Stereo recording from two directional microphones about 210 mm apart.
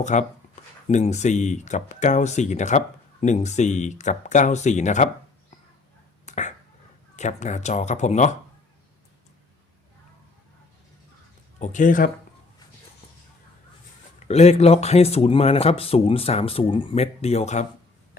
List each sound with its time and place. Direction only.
0.0 s speech: 35° left (ahead or behind)
6.2 s a sound: 35° left (ahead or behind)
7.2 s speech: 35° left (ahead or behind)
11.6 s speech: 35° left (ahead or behind)
14.3 s speech: 30° left (ahead or behind)